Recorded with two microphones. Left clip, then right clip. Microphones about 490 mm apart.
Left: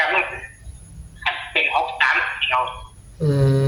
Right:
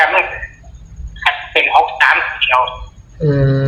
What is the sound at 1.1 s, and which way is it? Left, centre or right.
Speech, left.